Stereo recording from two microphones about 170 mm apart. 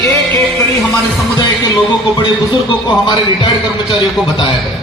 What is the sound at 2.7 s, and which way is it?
A man's voice, 25° left (ahead or behind).